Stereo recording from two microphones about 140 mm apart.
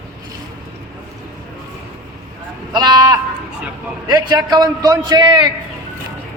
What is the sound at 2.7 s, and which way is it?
A man's voice, 30° right (ahead or behind).